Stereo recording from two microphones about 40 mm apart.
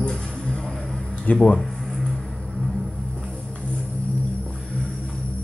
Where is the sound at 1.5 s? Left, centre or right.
Centre.